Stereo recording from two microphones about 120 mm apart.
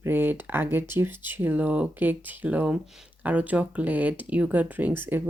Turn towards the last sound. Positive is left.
turn(degrees=-15)  # may be behind; listen again after turning